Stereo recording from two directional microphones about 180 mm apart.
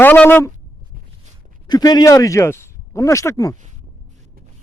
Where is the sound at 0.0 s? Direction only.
10° left (ahead or behind).